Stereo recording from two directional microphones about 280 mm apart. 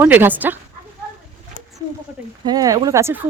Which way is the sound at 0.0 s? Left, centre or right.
Centre.